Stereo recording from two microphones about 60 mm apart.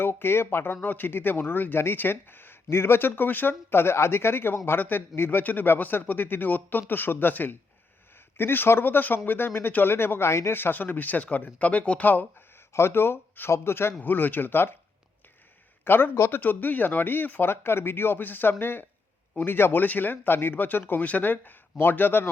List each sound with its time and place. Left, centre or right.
0.0 s speech: left
12.5 s a man's voice: left
14.0 s speech: left
15.8 s a man's voice: left
16.4 s speech: left